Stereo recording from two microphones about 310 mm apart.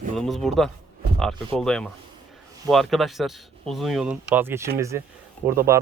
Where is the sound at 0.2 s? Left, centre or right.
Centre.